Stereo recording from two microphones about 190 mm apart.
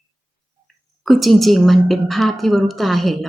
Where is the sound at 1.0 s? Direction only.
Centre (ahead or behind).